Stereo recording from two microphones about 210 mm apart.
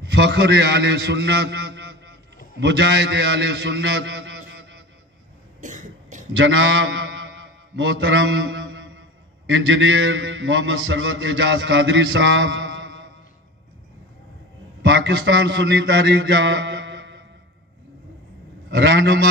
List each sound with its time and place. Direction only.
0.0 s a man's voice: 55° right (ahead or behind)
5.6 s cough: 35° right (ahead or behind)
6.3 s mantra: 60° right (ahead or behind)
14.8 s a man's voice: 60° right (ahead or behind)
18.7 s mantra: 55° right (ahead or behind)